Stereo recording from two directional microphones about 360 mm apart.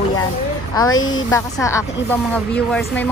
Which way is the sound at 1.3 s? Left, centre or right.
Centre.